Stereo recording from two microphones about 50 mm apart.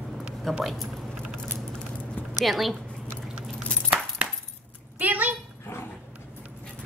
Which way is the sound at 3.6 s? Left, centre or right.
Centre.